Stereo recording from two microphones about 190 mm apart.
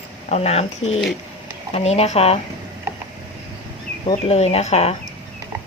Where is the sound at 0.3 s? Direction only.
35° left (ahead or behind).